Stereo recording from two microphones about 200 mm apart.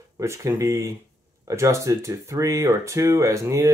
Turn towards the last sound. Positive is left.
turn(degrees=-15)  # may be behind; listen again after turning